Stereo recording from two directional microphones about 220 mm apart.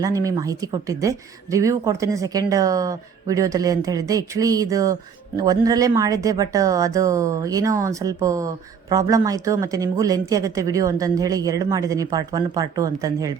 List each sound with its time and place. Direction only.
0.0 s speech: 15° right (ahead or behind)